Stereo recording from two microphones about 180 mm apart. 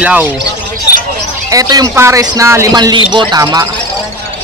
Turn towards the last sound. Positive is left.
turn(degrees=-20)  # may be behind; listen again after turning